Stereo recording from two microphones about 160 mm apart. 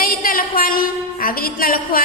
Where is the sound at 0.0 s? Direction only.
65° left (ahead or behind).